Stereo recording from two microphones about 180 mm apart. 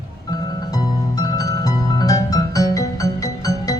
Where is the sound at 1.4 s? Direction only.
20° left (ahead or behind).